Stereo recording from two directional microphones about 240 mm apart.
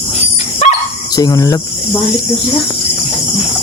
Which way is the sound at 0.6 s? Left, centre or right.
Left.